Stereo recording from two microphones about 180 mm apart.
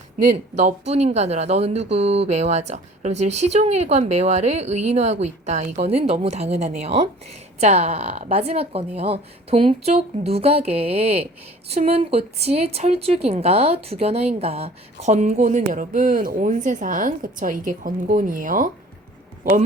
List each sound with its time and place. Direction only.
0.5 s speech: 40° right (ahead or behind)